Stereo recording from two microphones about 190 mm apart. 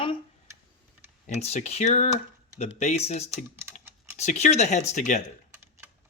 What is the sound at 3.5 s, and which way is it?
Typing, 10° right (ahead or behind).